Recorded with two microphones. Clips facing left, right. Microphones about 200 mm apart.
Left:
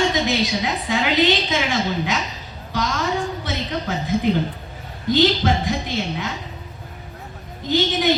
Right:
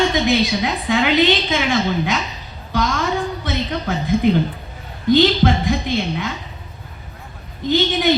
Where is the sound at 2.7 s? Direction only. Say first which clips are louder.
Right 3 dB; 50° right (ahead or behind).